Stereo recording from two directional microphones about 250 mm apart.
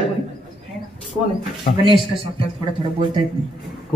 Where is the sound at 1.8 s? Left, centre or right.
Right.